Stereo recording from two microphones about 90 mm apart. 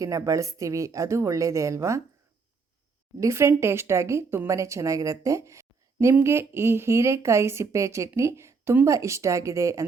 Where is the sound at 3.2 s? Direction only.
30° right (ahead or behind).